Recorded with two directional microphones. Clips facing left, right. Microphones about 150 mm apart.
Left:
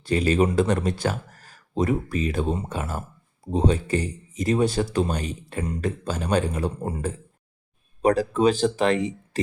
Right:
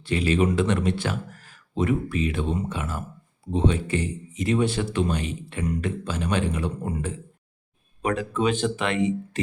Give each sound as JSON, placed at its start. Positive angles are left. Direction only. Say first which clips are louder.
{"t": 0.0, "sound": "speech", "louder": "left 1 dB", "side_deg": 40}